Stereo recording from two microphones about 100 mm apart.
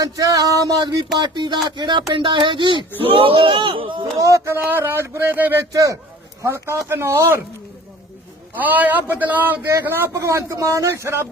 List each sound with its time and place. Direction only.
0.0 s a sound: 35° right (ahead or behind)
1.2 s speech: 50° right (ahead or behind)
3.0 s speech: 65° right (ahead or behind)
4.2 s speech: 30° right (ahead or behind)
8.5 s speech: 15° right (ahead or behind)